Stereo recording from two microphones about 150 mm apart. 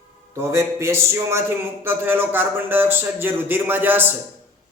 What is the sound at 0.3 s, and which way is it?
Speech, 20° right (ahead or behind).